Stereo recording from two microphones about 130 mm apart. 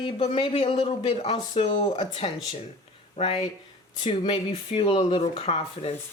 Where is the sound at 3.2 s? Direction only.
45° left (ahead or behind).